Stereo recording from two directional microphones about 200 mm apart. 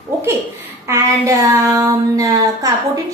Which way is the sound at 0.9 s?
15° right (ahead or behind).